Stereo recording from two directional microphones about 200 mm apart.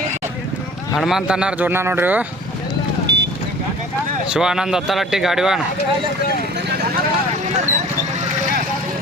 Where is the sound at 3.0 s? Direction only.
55° right (ahead or behind).